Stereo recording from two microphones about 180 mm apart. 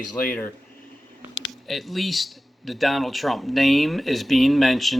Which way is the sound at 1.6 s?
Centre (ahead or behind).